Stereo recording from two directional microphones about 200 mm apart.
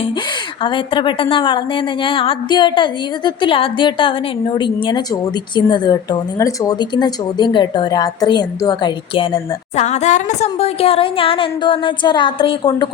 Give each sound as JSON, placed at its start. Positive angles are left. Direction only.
{"t": 0.6, "sound": "a woman's voice", "side_deg": 25}